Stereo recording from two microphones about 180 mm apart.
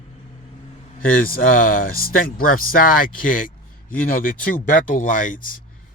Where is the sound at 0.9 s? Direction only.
50° left (ahead or behind).